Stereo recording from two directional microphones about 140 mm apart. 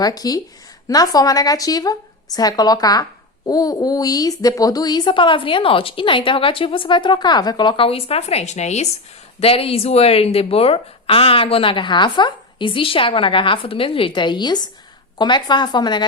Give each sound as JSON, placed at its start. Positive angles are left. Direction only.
{"t": 0.0, "sound": "a woman's voice", "side_deg": 25}